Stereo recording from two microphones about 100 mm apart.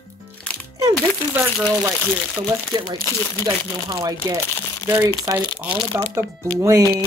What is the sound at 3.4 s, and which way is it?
Speech, 35° right (ahead or behind).